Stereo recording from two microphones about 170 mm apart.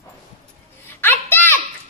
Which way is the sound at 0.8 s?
10° left (ahead or behind).